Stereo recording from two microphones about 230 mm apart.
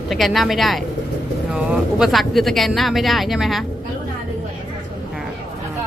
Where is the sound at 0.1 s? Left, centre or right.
Centre.